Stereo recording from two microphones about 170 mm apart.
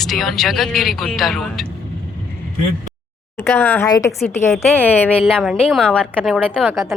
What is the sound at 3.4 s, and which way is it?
A woman's voice, 10° left (ahead or behind).